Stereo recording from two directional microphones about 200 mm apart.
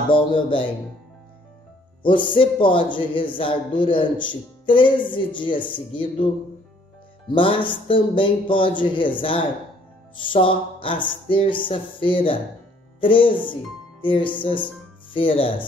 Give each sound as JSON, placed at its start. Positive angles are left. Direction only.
{"t": 0.1, "sound": "speech", "side_deg": 25}
{"t": 2.0, "sound": "speech", "side_deg": 25}